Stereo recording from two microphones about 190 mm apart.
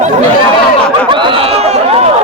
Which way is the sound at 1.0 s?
25° right (ahead or behind).